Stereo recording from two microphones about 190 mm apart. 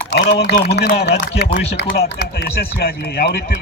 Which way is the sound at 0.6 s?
55° left (ahead or behind).